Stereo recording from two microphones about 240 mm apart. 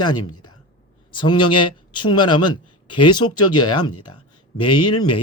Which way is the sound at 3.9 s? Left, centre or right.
Left.